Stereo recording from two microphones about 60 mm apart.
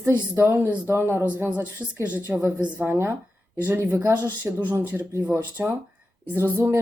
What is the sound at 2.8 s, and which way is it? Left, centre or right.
Speech, right.